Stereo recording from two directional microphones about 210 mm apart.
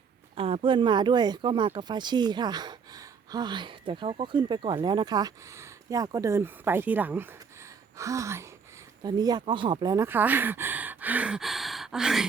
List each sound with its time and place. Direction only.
0.3 s speech: 25° right (ahead or behind); by 7.3 s 10° right (ahead or behind)
7.9 s gasp: 15° right (ahead or behind)
9.0 s speech: 20° right (ahead or behind); by 12.2 s 5° right (ahead or behind)